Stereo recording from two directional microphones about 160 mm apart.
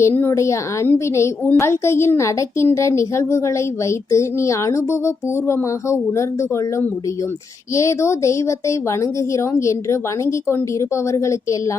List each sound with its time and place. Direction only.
0.0 s a woman's voice: 15° left (ahead or behind)
7.8 s a woman's voice: 20° left (ahead or behind)